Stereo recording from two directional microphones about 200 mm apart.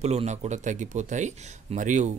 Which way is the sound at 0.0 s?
35° right (ahead or behind).